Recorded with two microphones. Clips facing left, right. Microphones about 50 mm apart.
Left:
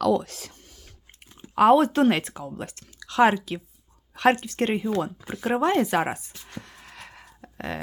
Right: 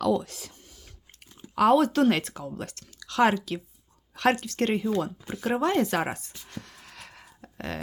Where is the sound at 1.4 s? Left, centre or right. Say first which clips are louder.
Left 3 dB; left.